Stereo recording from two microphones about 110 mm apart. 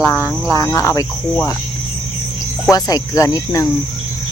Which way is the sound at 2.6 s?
35° left (ahead or behind).